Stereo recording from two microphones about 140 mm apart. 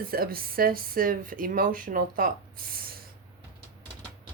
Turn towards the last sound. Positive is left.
turn(degrees=-90)